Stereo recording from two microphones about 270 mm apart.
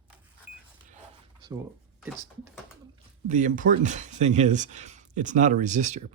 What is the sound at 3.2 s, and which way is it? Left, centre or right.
Speech, right.